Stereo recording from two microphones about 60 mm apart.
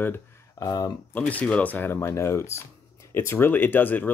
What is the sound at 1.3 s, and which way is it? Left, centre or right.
Speech, left.